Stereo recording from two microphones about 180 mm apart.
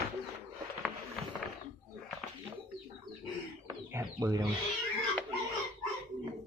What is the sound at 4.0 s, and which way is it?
Chicken, 20° right (ahead or behind).